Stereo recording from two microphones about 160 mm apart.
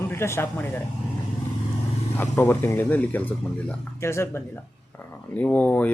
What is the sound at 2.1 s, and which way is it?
Speech, 10° left (ahead or behind).